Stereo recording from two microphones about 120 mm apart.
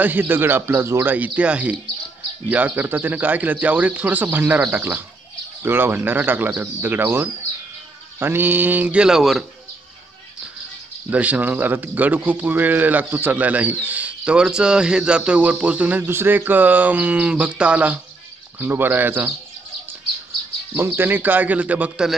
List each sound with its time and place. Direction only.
0.0 s speech: 15° right (ahead or behind)
11.1 s speech: 15° right (ahead or behind)
20.7 s speech: 15° right (ahead or behind)